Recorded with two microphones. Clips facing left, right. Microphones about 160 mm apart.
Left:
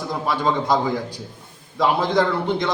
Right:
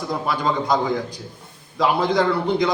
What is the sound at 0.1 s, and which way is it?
A man's voice, centre (ahead or behind).